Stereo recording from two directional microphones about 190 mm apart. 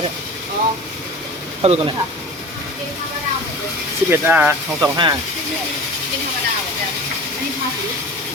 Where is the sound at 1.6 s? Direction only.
30° right (ahead or behind).